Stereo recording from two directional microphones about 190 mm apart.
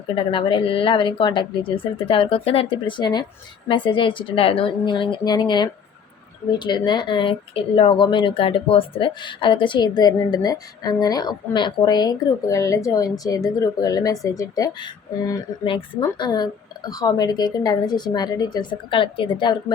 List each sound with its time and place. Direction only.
0.3 s speech: 25° left (ahead or behind)